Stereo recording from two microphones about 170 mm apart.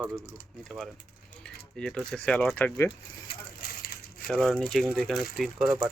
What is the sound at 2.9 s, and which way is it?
Coin, 70° left (ahead or behind).